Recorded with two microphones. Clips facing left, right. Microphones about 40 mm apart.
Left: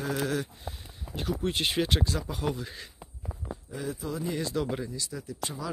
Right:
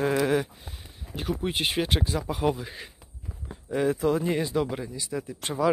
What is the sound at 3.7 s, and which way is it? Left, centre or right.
Speech, right.